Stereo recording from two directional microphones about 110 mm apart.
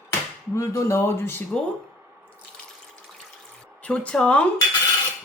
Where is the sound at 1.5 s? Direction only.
10° left (ahead or behind).